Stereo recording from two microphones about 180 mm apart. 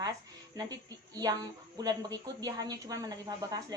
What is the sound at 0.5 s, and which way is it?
Speech, 20° right (ahead or behind).